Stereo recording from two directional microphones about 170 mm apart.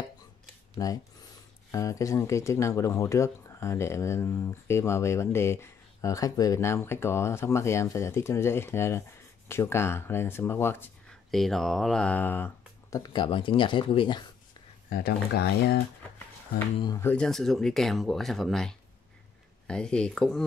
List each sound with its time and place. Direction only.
0.8 s speech: 20° left (ahead or behind)
11.2 s speech: centre (ahead or behind)
13.0 s speech: 30° left (ahead or behind)
14.9 s speech: 65° left (ahead or behind)
16.8 s speech: 20° left (ahead or behind)
17.1 s speech: 5° left (ahead or behind)